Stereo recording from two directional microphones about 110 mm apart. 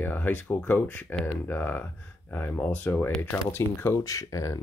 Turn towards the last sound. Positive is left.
turn(degrees=30)  # may be behind; listen again after turning